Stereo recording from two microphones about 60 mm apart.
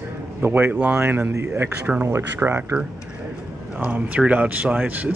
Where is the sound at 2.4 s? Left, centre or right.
Right.